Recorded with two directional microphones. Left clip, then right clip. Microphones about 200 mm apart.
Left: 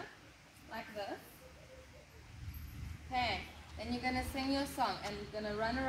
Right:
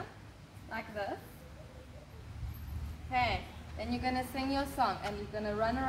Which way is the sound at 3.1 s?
Centre (ahead or behind).